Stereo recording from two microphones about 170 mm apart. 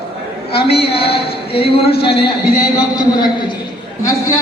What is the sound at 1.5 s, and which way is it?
Speech, 35° left (ahead or behind).